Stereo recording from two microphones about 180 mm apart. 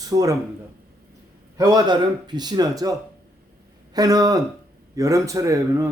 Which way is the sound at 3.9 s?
20° right (ahead or behind).